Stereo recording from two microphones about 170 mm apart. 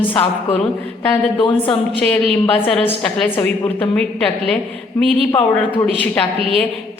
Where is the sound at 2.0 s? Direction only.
5° left (ahead or behind).